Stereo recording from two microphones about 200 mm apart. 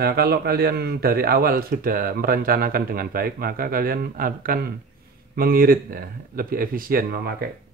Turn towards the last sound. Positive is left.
turn(degrees=-50)  # may be behind; listen again after turning